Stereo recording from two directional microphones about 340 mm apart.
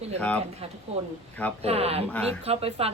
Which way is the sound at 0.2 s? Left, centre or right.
Centre.